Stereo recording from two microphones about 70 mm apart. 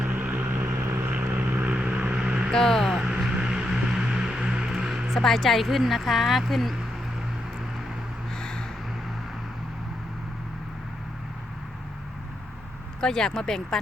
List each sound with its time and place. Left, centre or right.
0.0 s vehicle: right
2.5 s speech: centre
2.9 s a sound: centre
5.1 s speech: centre
8.4 s a sound: centre
13.0 s speech: centre